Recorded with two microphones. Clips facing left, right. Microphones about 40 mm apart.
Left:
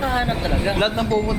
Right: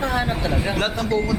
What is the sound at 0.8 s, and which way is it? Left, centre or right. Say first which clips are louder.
Speech: left 3 dB; left.